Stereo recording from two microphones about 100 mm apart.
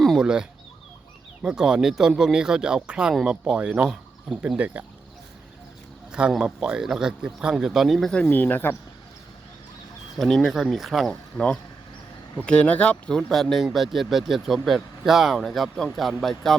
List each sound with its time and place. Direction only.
0.0 s fowl: 5° left (ahead or behind)
1.4 s speech: 10° right (ahead or behind)
4.5 s speech: 15° right (ahead or behind)
6.1 s speech: 10° right (ahead or behind)
8.3 s speech: 20° left (ahead or behind)
10.2 s speech: 5° left (ahead or behind)
11.1 s speech: 10° left (ahead or behind)